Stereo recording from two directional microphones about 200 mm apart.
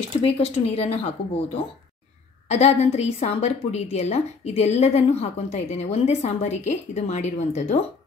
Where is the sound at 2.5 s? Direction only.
35° left (ahead or behind).